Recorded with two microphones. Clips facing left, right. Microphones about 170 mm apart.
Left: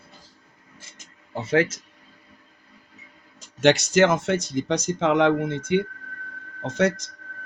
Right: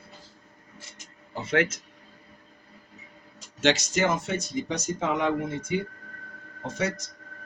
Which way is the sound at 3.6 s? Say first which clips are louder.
Left 6 dB; 65° left (ahead or behind).